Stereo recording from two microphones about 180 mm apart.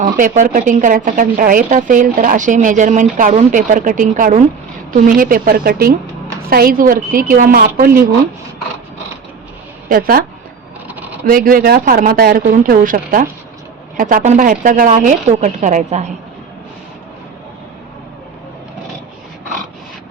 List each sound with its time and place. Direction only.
0.0 s a woman's voice: 45° right (ahead or behind)
9.9 s a woman's voice: 55° right (ahead or behind)
11.3 s a woman's voice: 50° right (ahead or behind)